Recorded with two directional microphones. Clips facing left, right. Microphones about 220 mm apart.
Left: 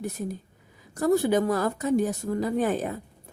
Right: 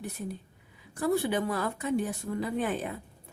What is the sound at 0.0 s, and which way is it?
A woman's voice, 45° left (ahead or behind).